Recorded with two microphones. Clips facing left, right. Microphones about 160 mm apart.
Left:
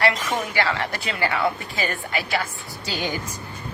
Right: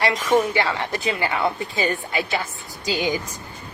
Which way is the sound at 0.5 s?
20° right (ahead or behind).